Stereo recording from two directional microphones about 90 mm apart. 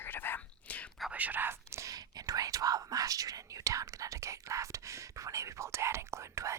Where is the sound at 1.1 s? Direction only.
20° right (ahead or behind).